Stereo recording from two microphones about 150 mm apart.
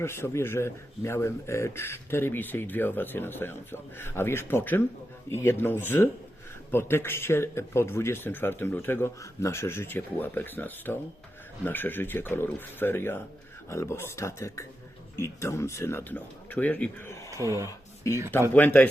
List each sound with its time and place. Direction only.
0.0 s speech: 15° left (ahead or behind)
17.3 s speech: 20° right (ahead or behind)
17.7 s a sound: 20° left (ahead or behind)
18.5 s speech: 10° left (ahead or behind)